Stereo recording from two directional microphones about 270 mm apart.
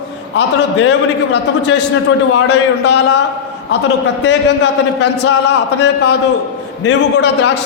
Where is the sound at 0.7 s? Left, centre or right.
Left.